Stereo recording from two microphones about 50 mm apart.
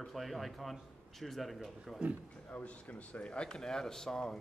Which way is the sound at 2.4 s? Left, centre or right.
Left.